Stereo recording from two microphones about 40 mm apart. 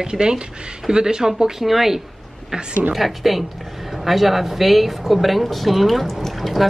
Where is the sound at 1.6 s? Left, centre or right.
Centre.